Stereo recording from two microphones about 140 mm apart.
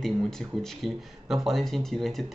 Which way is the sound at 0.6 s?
Centre (ahead or behind).